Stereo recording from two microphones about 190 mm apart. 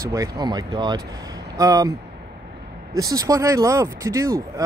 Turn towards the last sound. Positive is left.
turn(degrees=-15)  # may be behind; listen again after turning